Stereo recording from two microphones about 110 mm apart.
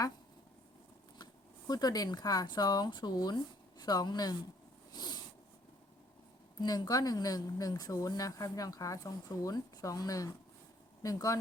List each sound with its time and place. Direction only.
1.2 s speech: 40° left (ahead or behind)
4.9 s a sound: 40° left (ahead or behind)
6.6 s speech: 35° left (ahead or behind)